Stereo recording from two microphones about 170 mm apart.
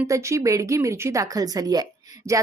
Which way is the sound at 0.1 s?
15° right (ahead or behind).